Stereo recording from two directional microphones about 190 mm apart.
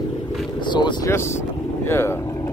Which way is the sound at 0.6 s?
25° left (ahead or behind).